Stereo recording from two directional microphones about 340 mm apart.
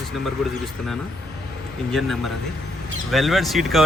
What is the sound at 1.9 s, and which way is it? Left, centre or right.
Speech, centre.